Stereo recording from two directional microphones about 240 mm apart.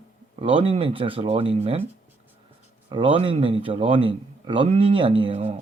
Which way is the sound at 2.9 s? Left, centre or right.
Right.